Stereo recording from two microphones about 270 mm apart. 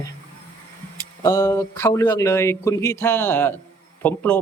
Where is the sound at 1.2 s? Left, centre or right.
Centre.